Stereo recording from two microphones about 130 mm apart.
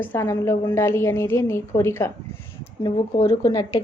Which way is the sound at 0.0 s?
20° left (ahead or behind).